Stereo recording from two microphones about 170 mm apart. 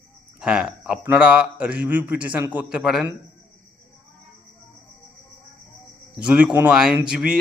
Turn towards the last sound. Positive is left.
turn(degrees=-5)  # may be behind; listen again after turning